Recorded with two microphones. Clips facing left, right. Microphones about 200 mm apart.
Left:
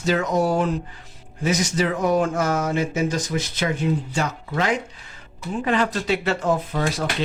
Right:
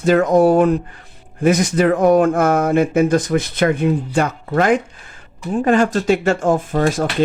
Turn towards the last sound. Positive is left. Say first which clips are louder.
# right 7 dB
turn(degrees=-50)  # may be behind; listen again after turning